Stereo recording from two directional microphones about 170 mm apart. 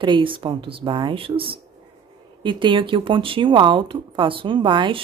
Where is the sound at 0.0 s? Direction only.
30° right (ahead or behind).